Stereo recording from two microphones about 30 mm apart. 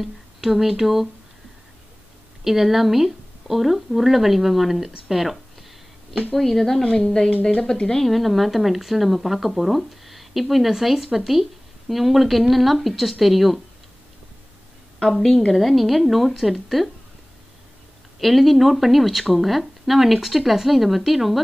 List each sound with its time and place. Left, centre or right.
0.4 s speech: centre
2.4 s speech: centre
6.3 s speech: centre
8.1 s speech: centre
15.1 s speech: centre
18.2 s speech: centre